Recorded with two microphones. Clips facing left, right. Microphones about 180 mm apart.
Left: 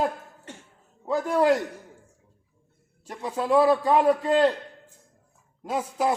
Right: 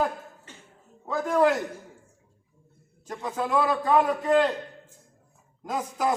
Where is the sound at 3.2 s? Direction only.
30° left (ahead or behind).